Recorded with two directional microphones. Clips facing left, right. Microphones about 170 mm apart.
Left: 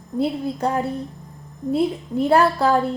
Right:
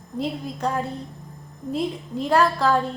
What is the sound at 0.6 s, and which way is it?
Speech, 25° left (ahead or behind).